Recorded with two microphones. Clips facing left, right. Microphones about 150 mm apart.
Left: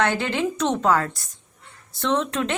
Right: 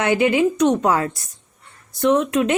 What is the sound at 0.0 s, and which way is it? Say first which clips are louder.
A woman's voice: right 6 dB; 15° right (ahead or behind).